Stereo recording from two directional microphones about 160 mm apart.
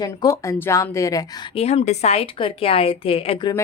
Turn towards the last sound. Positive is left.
turn(degrees=30)  # may be behind; listen again after turning